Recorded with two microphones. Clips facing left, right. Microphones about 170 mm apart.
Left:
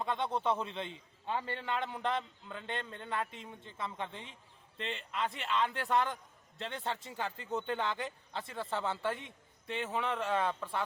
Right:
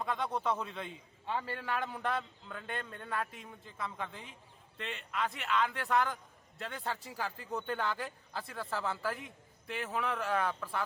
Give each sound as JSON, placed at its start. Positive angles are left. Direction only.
{"t": 0.0, "sound": "a man's voice", "side_deg": 25}